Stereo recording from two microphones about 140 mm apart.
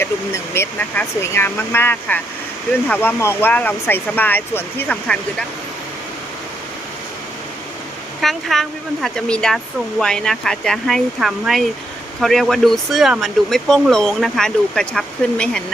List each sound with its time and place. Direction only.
0.0 s speech: 20° left (ahead or behind)
8.2 s speech: centre (ahead or behind)